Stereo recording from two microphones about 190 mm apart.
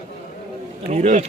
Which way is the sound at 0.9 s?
40° right (ahead or behind).